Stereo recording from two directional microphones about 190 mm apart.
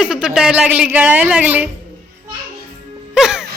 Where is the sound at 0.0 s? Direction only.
5° right (ahead or behind).